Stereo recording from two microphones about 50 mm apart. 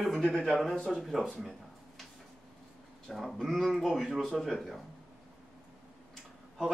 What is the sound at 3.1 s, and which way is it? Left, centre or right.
Speech, centre.